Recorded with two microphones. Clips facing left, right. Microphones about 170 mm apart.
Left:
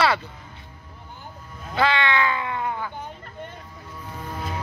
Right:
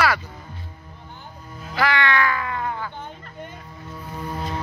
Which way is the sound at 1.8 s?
25° left (ahead or behind).